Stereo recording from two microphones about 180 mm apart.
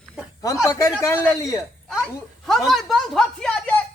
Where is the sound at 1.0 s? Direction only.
15° left (ahead or behind).